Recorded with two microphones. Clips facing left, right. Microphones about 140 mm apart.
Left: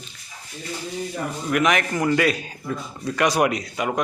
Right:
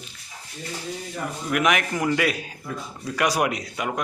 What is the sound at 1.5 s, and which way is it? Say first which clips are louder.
A man's voice: left 2 dB; 5° right (ahead or behind).